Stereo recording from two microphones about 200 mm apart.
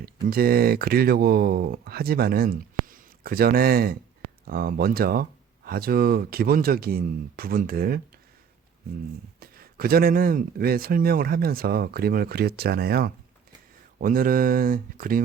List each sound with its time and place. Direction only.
0.0 s speech: 50° right (ahead or behind)
9.4 s speech: 50° right (ahead or behind)